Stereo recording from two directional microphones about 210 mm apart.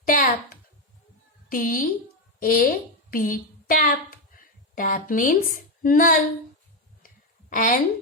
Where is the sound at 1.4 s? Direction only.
40° left (ahead or behind).